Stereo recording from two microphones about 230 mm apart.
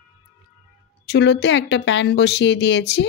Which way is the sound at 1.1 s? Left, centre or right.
Left.